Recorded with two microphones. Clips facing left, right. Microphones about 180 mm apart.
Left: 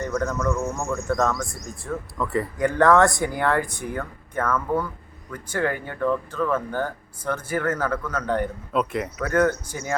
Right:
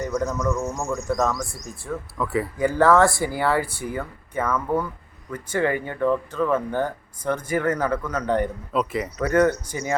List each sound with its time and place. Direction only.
0.0 s speech: 10° right (ahead or behind)
8.3 s speech: 5° left (ahead or behind)